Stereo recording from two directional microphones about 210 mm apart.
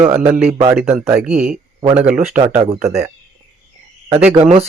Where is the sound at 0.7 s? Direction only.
Centre (ahead or behind).